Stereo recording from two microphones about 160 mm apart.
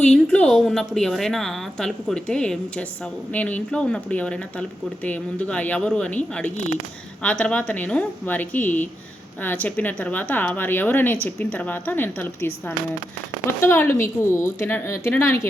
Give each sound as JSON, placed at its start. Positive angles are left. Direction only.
{"t": 0.1, "sound": "a woman's voice", "side_deg": 5}